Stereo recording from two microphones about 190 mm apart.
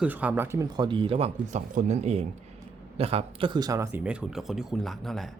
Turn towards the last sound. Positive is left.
turn(degrees=0)  # may be behind; listen again after turning